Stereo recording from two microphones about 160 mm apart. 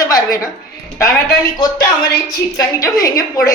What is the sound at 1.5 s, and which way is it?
Speech, 20° left (ahead or behind).